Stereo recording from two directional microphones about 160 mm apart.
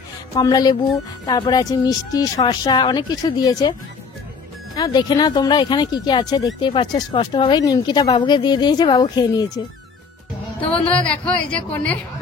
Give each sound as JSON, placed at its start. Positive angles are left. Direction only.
{"t": 0.4, "sound": "speech", "side_deg": 25}
{"t": 4.7, "sound": "speech", "side_deg": 25}
{"t": 10.7, "sound": "a woman's voice", "side_deg": 10}